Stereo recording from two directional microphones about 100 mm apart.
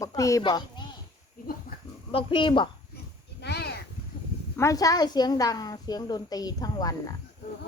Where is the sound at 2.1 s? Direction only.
55° left (ahead or behind).